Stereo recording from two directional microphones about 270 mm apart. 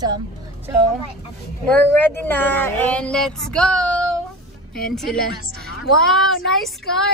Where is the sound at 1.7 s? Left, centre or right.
Centre.